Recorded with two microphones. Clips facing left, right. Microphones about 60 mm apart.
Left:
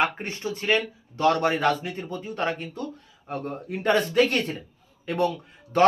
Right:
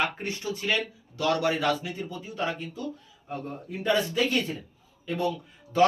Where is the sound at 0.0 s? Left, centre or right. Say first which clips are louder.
Left 3 dB; left.